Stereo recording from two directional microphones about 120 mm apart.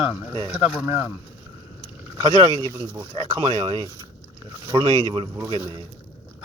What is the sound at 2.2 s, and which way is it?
Speech, 35° right (ahead or behind).